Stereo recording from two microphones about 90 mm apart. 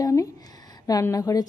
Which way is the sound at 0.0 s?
35° left (ahead or behind).